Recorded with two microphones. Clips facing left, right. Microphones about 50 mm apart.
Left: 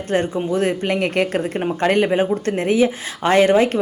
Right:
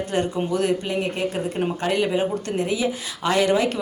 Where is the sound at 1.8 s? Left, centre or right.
Left.